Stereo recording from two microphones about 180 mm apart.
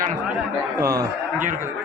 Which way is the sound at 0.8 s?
15° right (ahead or behind).